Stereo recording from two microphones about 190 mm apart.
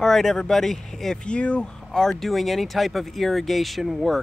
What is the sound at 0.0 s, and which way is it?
Speech, centre (ahead or behind).